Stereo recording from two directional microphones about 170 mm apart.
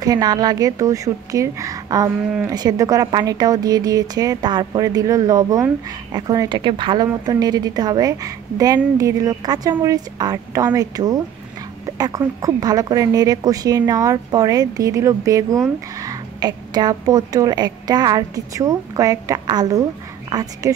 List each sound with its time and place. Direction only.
0.0 s a woman's voice: 25° right (ahead or behind)